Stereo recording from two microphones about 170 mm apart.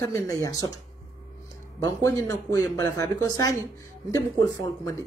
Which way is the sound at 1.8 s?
20° left (ahead or behind).